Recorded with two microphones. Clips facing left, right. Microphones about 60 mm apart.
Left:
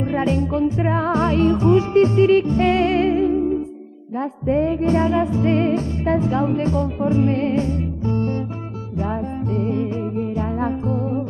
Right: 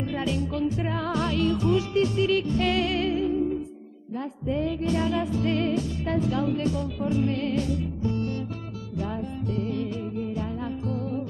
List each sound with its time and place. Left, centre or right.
0.0 s music: left